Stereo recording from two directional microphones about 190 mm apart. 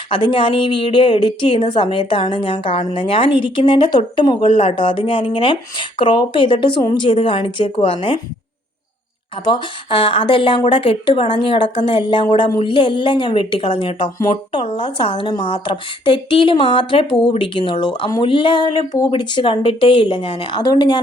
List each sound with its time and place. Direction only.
0.1 s a woman's voice: 25° left (ahead or behind)
9.4 s a woman's voice: 25° left (ahead or behind)